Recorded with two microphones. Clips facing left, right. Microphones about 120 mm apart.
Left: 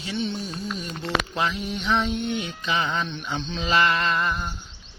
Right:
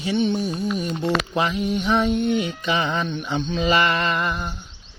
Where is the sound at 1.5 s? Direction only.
45° right (ahead or behind).